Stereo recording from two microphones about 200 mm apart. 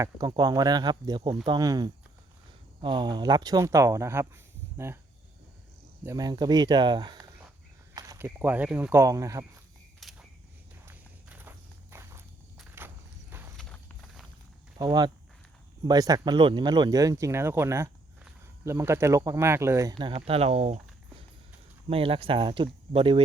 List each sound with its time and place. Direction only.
0.0 s speech: 20° right (ahead or behind)
6.1 s speech: 20° right (ahead or behind)
10.0 s a sound: centre (ahead or behind)
10.8 s walk: 10° right (ahead or behind)
13.6 s walk: 5° left (ahead or behind)
14.8 s speech: 20° right (ahead or behind)
21.8 s speech: 30° right (ahead or behind)